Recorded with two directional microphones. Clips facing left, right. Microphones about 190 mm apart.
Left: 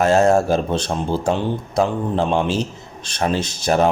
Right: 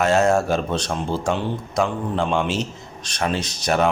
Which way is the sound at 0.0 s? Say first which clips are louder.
Left 3 dB; 35° left (ahead or behind).